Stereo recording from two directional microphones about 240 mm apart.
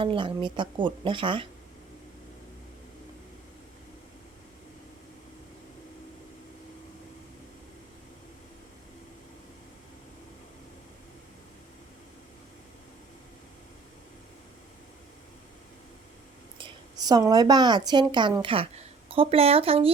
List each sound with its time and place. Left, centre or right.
0.0 s speech: right
16.6 s a woman's voice: centre